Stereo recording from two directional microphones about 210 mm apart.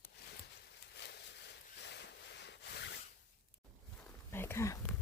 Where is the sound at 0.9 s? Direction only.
50° left (ahead or behind).